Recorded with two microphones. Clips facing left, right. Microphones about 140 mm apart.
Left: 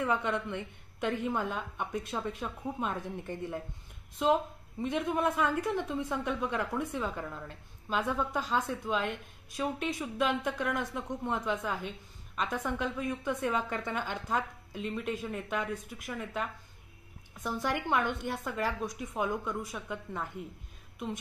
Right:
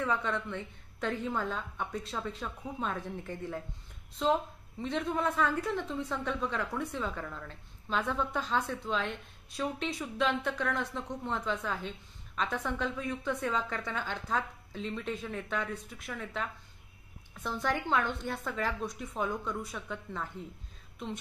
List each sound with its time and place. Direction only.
0.0 s a woman's voice: 15° left (ahead or behind)
18.9 s a woman's voice: 5° left (ahead or behind)